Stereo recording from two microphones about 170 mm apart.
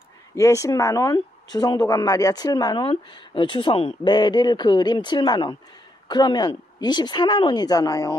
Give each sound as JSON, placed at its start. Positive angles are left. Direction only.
{"t": 0.4, "sound": "speech", "side_deg": 20}